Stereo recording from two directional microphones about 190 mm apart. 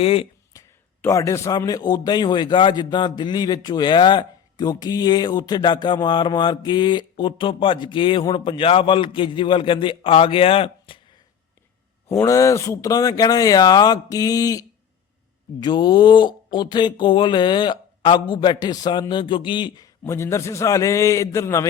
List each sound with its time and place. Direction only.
0.0 s a man's voice: 30° left (ahead or behind)
0.5 s a sound: 20° left (ahead or behind)
1.0 s a man's voice: 15° left (ahead or behind)
12.0 s a man's voice: 15° left (ahead or behind)
15.6 s a man's voice: 20° left (ahead or behind)